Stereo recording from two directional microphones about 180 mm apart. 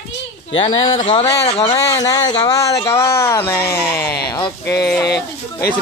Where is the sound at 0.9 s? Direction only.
30° left (ahead or behind).